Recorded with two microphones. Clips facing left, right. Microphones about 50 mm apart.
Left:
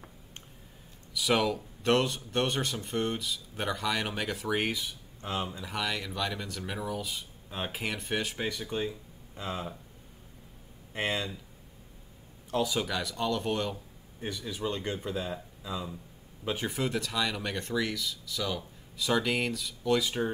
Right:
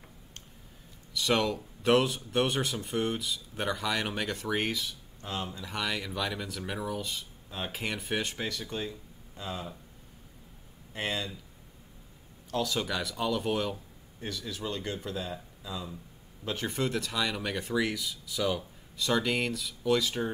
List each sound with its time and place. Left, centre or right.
1.1 s speech: centre
5.7 s speech: centre
7.4 s speech: centre
7.7 s speech: centre
8.5 s speech: centre
10.9 s speech: left
12.4 s speech: centre
12.7 s speech: centre
14.2 s speech: centre
18.9 s speech: centre